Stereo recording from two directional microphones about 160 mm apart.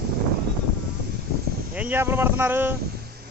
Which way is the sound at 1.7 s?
10° right (ahead or behind).